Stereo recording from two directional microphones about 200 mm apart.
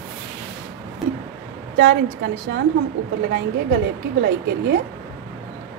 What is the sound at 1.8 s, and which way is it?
A woman's voice, 60° right (ahead or behind).